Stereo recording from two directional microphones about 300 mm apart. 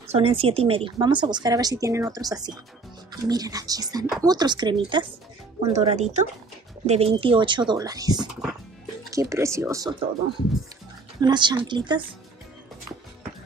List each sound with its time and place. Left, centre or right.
0.1 s a woman's voice: centre